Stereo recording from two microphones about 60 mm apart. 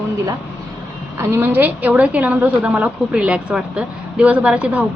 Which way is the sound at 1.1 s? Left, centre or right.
Right.